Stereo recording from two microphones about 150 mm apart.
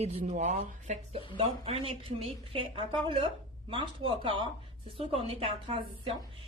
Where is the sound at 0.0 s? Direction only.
50° right (ahead or behind).